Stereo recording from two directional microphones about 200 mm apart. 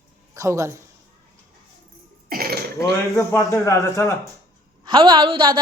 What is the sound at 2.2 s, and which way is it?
Cough, 50° right (ahead or behind).